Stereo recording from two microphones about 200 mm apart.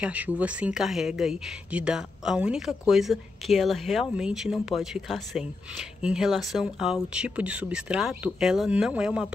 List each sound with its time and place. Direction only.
0.0 s speech: 5° right (ahead or behind)